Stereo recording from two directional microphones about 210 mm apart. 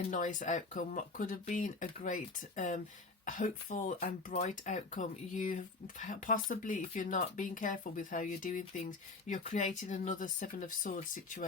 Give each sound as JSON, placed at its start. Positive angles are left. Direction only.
{"t": 0.1, "sound": "speech", "side_deg": 40}